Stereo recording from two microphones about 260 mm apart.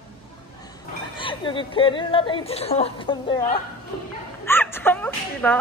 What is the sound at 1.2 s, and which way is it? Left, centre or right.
A woman's voice, centre.